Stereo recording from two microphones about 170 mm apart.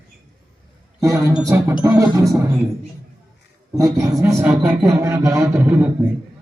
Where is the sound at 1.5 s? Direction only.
15° right (ahead or behind).